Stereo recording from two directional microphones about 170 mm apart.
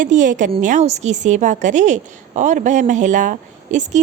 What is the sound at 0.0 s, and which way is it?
A woman's voice, 50° right (ahead or behind).